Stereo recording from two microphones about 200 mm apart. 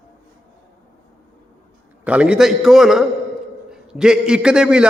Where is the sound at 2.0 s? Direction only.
5° right (ahead or behind).